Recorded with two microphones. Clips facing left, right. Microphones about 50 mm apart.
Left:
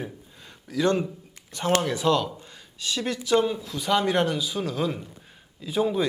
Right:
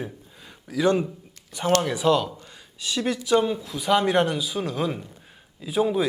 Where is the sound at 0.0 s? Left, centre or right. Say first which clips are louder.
Right 1 dB; centre.